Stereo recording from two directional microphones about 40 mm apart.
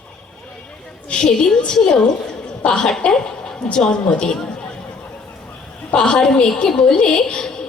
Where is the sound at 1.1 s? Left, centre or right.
Left.